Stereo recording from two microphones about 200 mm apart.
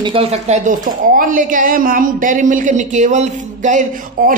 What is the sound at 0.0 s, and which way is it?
Speech, 25° right (ahead or behind).